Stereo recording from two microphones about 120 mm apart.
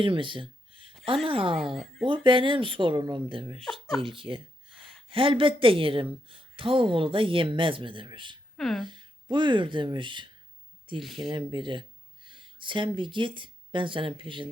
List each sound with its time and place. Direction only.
0.0 s a sound: 45° right (ahead or behind)
1.0 s speech: 50° right (ahead or behind)
1.5 s speech: centre (ahead or behind)
2.0 s speech: 45° right (ahead or behind)
3.6 s speech: 5° left (ahead or behind)
4.0 s speech: 45° right (ahead or behind)
4.7 s a sound: 5° left (ahead or behind)
5.0 s speech: 45° right (ahead or behind)
8.5 s speech: 5° left (ahead or behind)
8.8 s speech: 40° right (ahead or behind)
11.0 s speech: centre (ahead or behind)
11.3 s speech: 40° right (ahead or behind)